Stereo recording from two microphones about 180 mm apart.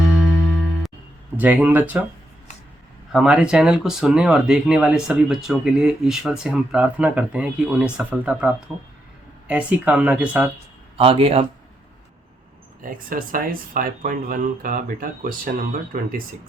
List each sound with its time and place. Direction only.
1.4 s speech: 10° right (ahead or behind)
3.1 s speech: 5° right (ahead or behind)
10.9 s speech: 30° right (ahead or behind)
12.8 s speech: 50° right (ahead or behind)